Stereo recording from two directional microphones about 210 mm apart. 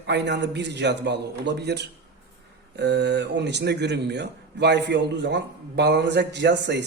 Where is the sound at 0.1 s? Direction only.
55° right (ahead or behind).